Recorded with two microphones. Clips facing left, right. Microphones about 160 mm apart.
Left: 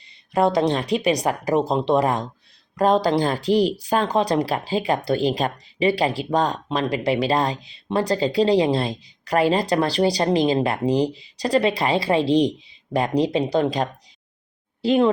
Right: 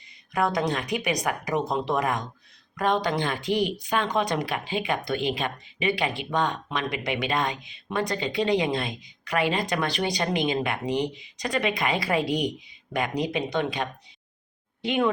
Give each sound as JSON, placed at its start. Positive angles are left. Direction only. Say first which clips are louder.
{"t": 0.3, "sound": "speech", "louder": "left 6 dB", "side_deg": 30}